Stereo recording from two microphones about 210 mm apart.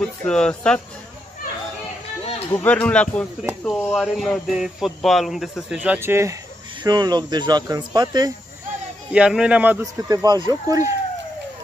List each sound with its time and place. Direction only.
0.0 s speech: 5° left (ahead or behind)
2.5 s speech: 5° left (ahead or behind); by 8.3 s 20° right (ahead or behind)
9.1 s speech: 5° right (ahead or behind)
10.0 s speech: 20° right (ahead or behind)